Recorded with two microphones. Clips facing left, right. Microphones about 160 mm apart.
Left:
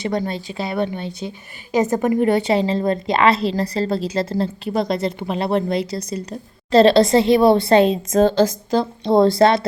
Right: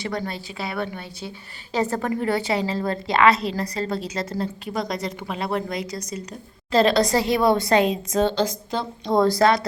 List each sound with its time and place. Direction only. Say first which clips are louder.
0.0 s a woman's voice: left 6 dB; 20° left (ahead or behind)
8.1 s a woman's voice: left 7 dB; 45° left (ahead or behind); by 9.6 s 25° left (ahead or behind)